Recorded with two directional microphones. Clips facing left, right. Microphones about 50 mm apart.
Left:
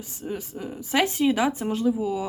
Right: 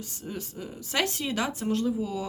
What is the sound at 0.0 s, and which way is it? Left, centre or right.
Speech, centre.